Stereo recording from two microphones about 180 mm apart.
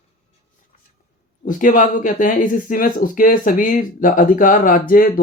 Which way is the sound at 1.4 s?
50° left (ahead or behind).